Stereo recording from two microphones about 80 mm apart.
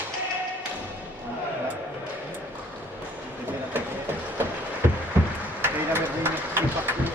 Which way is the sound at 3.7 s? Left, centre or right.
Right.